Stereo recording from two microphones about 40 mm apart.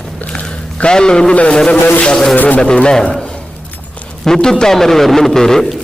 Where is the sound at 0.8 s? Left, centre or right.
Centre.